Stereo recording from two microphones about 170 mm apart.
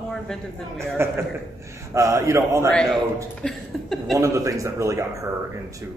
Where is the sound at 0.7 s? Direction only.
15° right (ahead or behind).